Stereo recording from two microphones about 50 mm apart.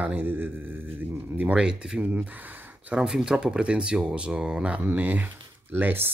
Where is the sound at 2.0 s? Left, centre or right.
Right.